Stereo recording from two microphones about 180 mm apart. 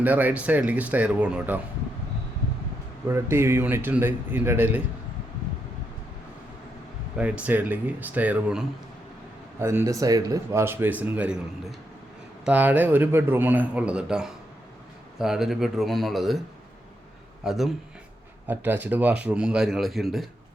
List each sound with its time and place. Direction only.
0.0 s speech: 10° right (ahead or behind)
3.1 s speech: 15° right (ahead or behind)
7.2 s speech: 5° right (ahead or behind)
17.4 s a man's voice: centre (ahead or behind)